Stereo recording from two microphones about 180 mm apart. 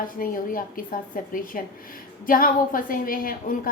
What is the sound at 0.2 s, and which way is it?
A woman's voice, 50° left (ahead or behind).